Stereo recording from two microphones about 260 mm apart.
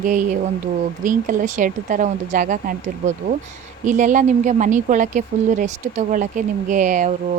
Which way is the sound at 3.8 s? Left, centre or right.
Right.